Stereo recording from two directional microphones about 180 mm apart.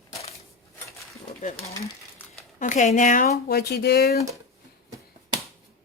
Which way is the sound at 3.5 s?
60° left (ahead or behind).